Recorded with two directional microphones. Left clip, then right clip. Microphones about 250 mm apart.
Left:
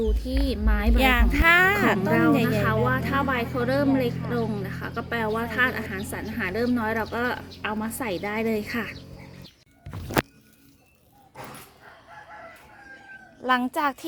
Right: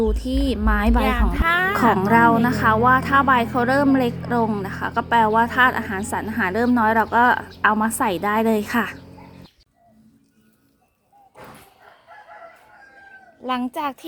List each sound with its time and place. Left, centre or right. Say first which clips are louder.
0.1 s a woman's voice: right 5 dB; centre
1.0 s a woman's voice: left 1 dB; left
2.0 s a woman's voice: right 6 dB; centre
13.4 s speech: left 1 dB; centre